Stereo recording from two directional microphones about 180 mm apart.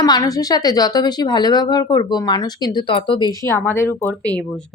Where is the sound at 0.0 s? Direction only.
20° left (ahead or behind).